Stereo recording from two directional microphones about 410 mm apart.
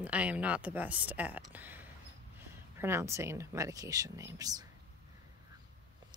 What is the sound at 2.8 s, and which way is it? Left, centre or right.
Speech, centre.